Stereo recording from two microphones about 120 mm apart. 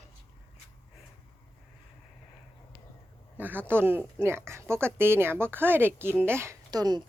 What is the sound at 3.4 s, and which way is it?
Speech, 15° right (ahead or behind).